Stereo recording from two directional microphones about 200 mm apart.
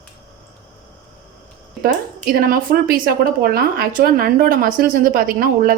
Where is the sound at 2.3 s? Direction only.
45° right (ahead or behind).